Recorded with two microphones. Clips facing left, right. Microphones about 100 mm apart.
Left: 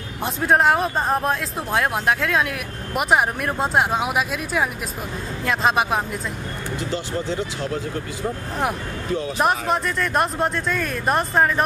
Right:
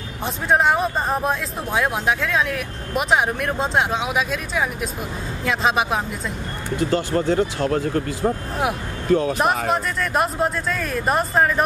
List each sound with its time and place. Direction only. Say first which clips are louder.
0.2 s speech: left 1 dB; centre (ahead or behind)
6.8 s speech: right 7 dB; 50° right (ahead or behind)
9.4 s speech: even; centre (ahead or behind)